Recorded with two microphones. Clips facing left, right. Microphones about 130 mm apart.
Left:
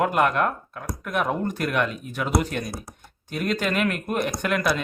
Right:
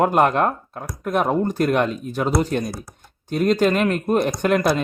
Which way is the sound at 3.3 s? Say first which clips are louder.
Right 8 dB; 40° right (ahead or behind).